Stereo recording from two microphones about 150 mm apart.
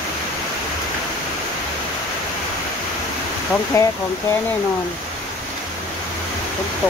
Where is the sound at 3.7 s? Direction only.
20° left (ahead or behind).